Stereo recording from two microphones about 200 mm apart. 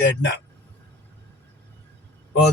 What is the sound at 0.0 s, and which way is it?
Speech, 60° left (ahead or behind).